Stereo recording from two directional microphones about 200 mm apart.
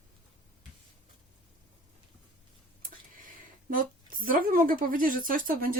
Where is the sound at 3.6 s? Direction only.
45° right (ahead or behind).